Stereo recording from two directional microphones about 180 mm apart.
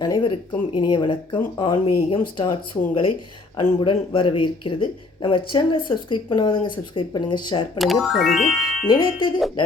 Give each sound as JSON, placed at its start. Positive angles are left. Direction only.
{"t": 0.0, "sound": "speech", "side_deg": 25}
{"t": 7.8, "sound": "speech", "side_deg": 0}
{"t": 8.9, "sound": "speech", "side_deg": 25}